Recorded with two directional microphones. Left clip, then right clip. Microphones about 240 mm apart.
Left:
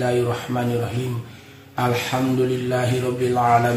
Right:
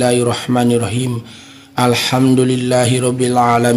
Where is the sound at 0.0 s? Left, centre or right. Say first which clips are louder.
Right 7 dB; right.